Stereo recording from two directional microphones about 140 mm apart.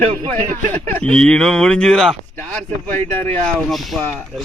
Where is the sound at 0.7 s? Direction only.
10° left (ahead or behind).